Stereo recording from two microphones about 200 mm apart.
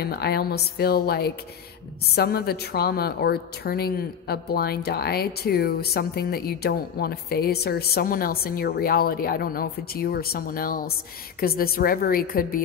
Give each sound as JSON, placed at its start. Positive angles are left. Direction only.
{"t": 0.0, "sound": "a woman's voice", "side_deg": 50}